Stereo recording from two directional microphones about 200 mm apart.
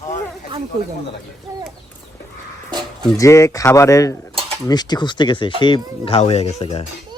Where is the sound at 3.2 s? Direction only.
15° left (ahead or behind).